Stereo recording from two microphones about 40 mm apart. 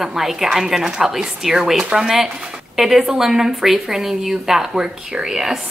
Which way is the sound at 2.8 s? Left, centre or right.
Centre.